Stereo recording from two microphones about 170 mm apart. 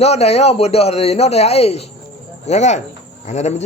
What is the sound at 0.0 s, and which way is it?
A man's voice, 40° left (ahead or behind).